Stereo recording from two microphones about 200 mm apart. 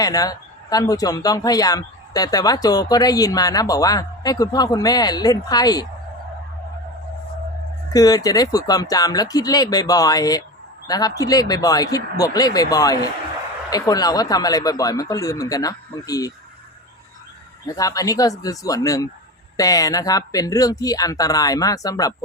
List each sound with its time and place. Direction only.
0.0 s speech: 20° left (ahead or behind)
7.9 s speech: 20° left (ahead or behind)
17.7 s speech: 15° left (ahead or behind)